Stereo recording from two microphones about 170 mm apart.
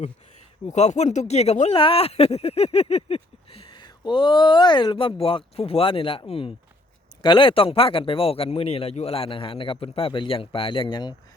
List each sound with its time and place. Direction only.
0.6 s speech: 40° left (ahead or behind)